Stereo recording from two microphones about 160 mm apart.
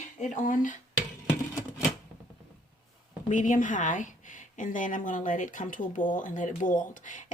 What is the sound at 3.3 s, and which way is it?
A woman's voice, 50° left (ahead or behind).